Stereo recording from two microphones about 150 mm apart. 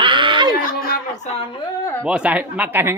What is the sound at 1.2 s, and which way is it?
Speech, 40° left (ahead or behind).